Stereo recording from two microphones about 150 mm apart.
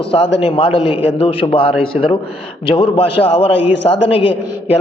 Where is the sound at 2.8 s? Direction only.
40° left (ahead or behind).